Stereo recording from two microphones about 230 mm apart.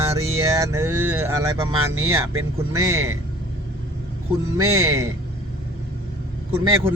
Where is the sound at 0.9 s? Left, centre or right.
Right.